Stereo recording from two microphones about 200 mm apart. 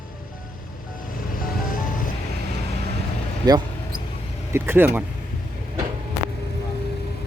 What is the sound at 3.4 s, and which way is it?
Speech, 20° right (ahead or behind).